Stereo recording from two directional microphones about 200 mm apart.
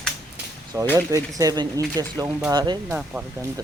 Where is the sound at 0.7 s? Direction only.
15° right (ahead or behind).